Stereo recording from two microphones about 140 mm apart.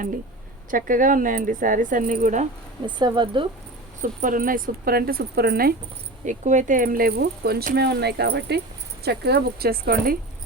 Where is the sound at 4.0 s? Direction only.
70° right (ahead or behind); by 5.7 s 90° right.